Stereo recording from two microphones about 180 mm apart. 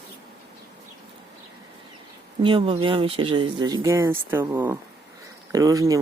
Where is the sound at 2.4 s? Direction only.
30° right (ahead or behind).